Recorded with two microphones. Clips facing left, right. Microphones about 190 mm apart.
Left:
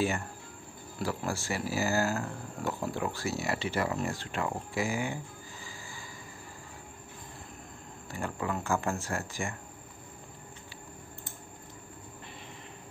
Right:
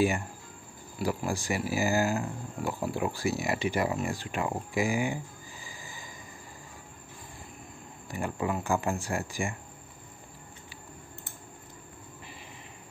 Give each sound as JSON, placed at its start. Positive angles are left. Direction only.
{"t": 0.9, "sound": "speech", "side_deg": -15}
{"t": 8.1, "sound": "speech", "side_deg": -15}